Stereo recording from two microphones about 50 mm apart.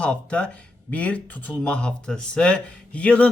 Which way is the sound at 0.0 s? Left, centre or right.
Left.